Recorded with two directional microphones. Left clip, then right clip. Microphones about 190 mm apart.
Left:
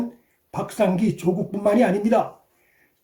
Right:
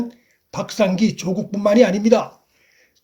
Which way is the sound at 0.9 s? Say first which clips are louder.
Right 1 dB; 35° right (ahead or behind).